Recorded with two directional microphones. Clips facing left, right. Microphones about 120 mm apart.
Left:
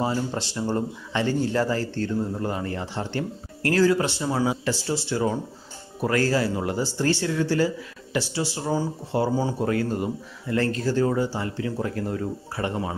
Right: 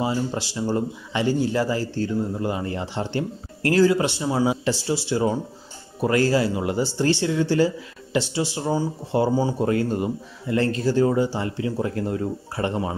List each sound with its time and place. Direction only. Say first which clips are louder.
0.0 s speech: right 1 dB; 10° right (ahead or behind); by 12.9 s 25° right (ahead or behind)